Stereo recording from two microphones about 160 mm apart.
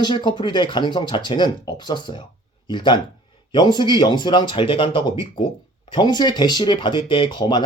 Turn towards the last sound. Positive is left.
turn(degrees=30)  # may be behind; listen again after turning